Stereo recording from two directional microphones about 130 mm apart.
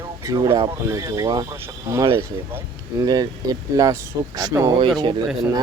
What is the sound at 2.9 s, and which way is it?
Speech, 30° right (ahead or behind).